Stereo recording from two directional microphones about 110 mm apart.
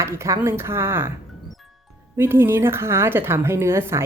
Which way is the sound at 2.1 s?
20° right (ahead or behind).